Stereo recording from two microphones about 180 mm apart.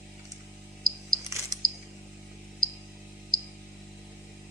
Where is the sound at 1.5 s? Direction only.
20° right (ahead or behind).